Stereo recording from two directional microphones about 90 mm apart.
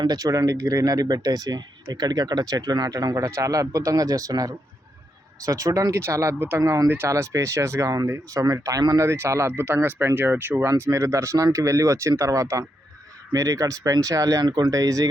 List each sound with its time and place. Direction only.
0.0 s speech: 45° right (ahead or behind)